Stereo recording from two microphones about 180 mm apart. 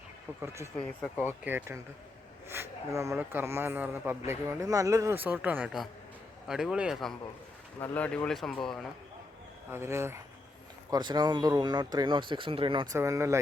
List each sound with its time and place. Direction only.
0.4 s speech: 15° right (ahead or behind)
0.8 s speech: 5° left (ahead or behind)
1.2 s speech: 10° right (ahead or behind)
7.8 s speech: 10° left (ahead or behind)
9.7 s speech: 15° right (ahead or behind)